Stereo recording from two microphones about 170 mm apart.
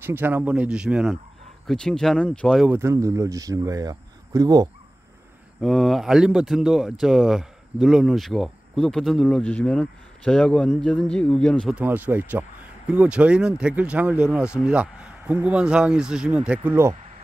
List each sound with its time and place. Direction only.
0.0 s speech: 10° right (ahead or behind)
2.7 s speech: 15° right (ahead or behind)
5.6 s speech: centre (ahead or behind)
11.7 s speech: 10° right (ahead or behind)